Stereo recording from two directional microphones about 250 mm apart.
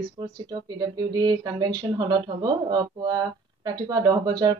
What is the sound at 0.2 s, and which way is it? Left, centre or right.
Speech, centre.